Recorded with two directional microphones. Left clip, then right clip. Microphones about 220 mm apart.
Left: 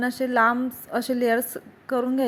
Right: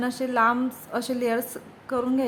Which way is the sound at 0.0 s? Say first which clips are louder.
Left 2 dB; 20° left (ahead or behind).